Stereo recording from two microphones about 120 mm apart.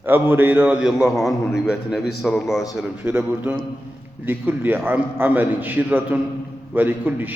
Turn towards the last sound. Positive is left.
turn(degrees=-15)  # may be behind; listen again after turning